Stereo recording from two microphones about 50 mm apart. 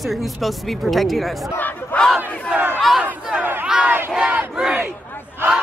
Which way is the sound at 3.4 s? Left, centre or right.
Right.